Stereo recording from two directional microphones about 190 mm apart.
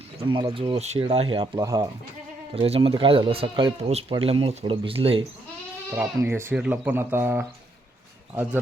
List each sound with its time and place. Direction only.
0.3 s speech: 25° right (ahead or behind)
2.6 s speech: 30° right (ahead or behind)
5.9 s speech: 15° right (ahead or behind)